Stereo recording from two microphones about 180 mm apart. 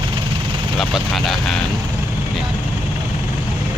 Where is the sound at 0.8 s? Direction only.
Centre (ahead or behind).